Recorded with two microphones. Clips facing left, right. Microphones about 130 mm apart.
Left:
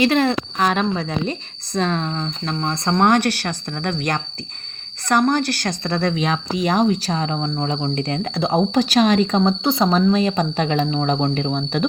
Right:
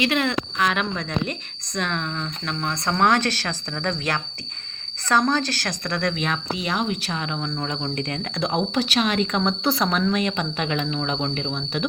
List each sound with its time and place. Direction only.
0.0 s speech: 35° left (ahead or behind)
2.9 s speech: 15° left (ahead or behind); by 11.9 s 45° left (ahead or behind)